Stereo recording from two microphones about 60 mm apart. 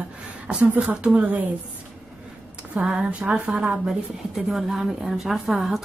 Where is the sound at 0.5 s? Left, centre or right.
Centre.